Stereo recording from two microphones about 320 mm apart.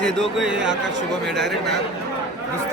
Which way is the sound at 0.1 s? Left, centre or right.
Centre.